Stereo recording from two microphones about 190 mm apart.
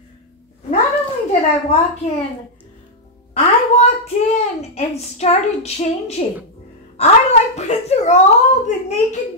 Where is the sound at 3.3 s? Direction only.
35° left (ahead or behind).